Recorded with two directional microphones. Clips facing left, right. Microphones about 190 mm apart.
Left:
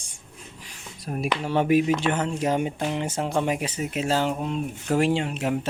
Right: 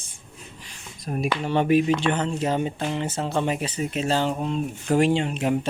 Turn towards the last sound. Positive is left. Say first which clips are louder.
# right 2 dB
turn(degrees=5)  # may be behind; listen again after turning